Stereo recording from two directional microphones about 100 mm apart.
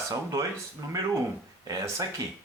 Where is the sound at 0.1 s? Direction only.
35° right (ahead or behind).